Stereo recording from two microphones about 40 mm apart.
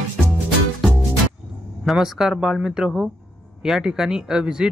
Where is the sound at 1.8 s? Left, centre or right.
Centre.